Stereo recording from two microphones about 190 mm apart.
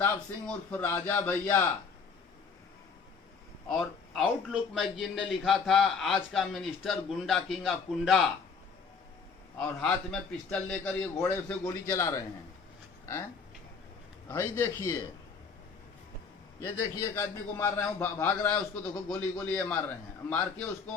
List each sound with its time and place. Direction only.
0.0 s a man's voice: 10° left (ahead or behind)
3.7 s a man's voice: centre (ahead or behind)
9.6 s a man's voice: 5° left (ahead or behind)
14.3 s a man's voice: 10° left (ahead or behind)
16.6 s a man's voice: 15° left (ahead or behind)